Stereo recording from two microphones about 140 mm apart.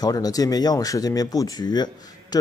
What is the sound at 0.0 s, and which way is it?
Speech, 25° left (ahead or behind).